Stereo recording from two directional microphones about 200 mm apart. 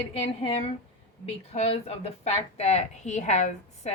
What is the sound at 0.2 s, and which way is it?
A woman's voice, 30° left (ahead or behind).